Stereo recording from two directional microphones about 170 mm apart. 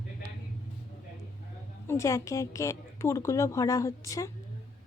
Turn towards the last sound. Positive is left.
turn(degrees=20)  # may be behind; listen again after turning